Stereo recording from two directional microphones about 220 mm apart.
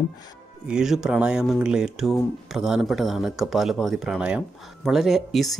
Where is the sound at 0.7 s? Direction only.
5° right (ahead or behind).